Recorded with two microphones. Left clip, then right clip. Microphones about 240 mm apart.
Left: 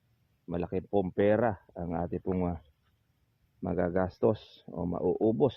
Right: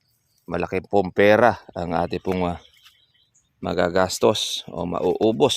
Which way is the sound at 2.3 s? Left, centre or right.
Right.